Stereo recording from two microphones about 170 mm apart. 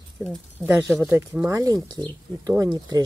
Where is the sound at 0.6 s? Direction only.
10° right (ahead or behind).